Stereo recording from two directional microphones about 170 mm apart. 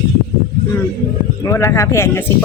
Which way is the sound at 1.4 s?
15° left (ahead or behind).